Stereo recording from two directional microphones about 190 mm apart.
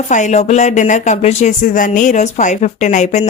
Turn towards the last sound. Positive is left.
turn(degrees=40)  # may be behind; listen again after turning